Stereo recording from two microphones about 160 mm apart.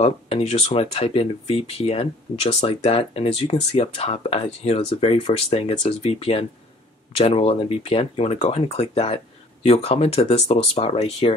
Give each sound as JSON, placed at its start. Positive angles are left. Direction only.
{"t": 0.0, "sound": "speech", "side_deg": 40}